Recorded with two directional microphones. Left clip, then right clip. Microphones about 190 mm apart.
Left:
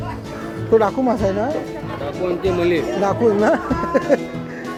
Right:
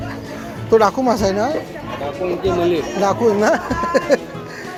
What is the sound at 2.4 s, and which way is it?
Speech, 40° left (ahead or behind).